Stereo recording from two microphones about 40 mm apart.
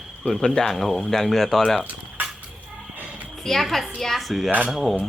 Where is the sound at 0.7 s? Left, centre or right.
Centre.